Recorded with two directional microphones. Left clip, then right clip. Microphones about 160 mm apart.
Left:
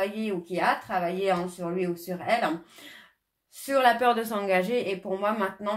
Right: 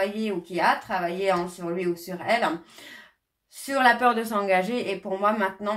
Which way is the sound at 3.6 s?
35° left (ahead or behind).